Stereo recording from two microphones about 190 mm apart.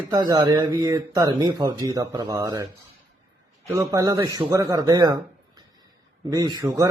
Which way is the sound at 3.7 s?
15° right (ahead or behind).